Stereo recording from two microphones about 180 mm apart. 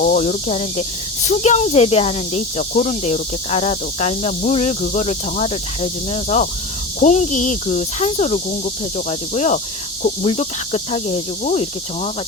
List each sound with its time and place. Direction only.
0.0 s speech: 45° left (ahead or behind)